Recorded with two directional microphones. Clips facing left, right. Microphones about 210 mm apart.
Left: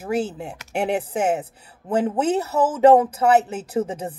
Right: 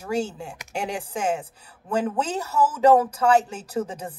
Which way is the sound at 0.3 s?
20° left (ahead or behind).